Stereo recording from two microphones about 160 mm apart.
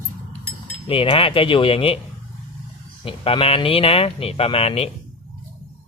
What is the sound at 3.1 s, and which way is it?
Speech, 35° left (ahead or behind).